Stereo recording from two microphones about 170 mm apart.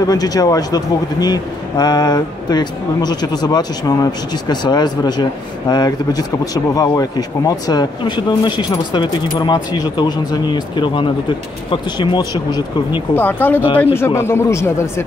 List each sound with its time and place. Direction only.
0.0 s speech: 20° left (ahead or behind)
13.1 s speech: 10° left (ahead or behind)